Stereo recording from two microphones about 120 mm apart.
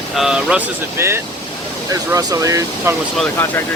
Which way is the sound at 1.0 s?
20° right (ahead or behind).